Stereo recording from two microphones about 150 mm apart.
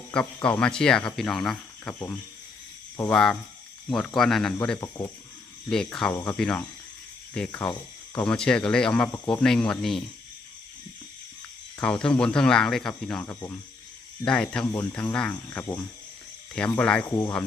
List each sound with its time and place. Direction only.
0.4 s speech: 10° left (ahead or behind)
4.8 s speech: 20° left (ahead or behind)
5.6 s speech: 5° left (ahead or behind)
11.8 s speech: 5° left (ahead or behind)
14.6 s speech: 20° left (ahead or behind)
17.1 s speech: 20° left (ahead or behind)